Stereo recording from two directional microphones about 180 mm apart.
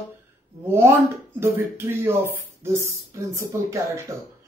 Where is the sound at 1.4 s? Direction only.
10° right (ahead or behind).